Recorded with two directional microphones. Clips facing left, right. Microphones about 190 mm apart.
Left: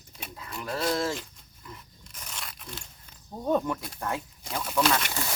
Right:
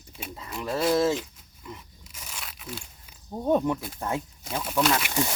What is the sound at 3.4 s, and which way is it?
Speech, 20° right (ahead or behind).